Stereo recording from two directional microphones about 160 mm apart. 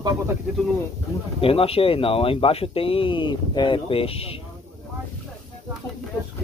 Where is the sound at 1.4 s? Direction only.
35° left (ahead or behind).